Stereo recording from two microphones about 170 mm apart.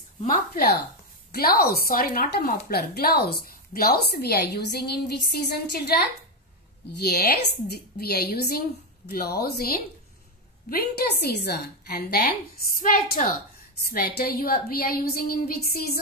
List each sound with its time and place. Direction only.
0.2 s a woman's voice: 55° left (ahead or behind)
12.8 s a woman's voice: 55° left (ahead or behind)
13.8 s a woman's voice: 65° left (ahead or behind)